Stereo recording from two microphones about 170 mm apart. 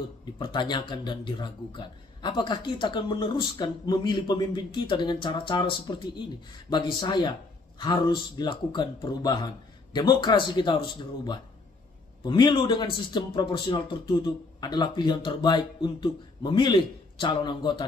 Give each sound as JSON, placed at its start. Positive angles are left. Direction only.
{"t": 0.4, "sound": "a man's voice", "side_deg": 25}